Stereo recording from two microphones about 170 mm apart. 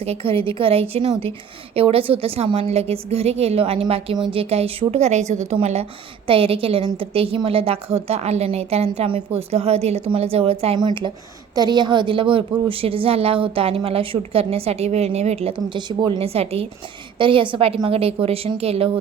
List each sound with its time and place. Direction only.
0.0 s a woman's voice: 35° right (ahead or behind)